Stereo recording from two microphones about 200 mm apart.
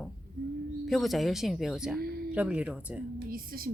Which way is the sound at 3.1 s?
45° right (ahead or behind).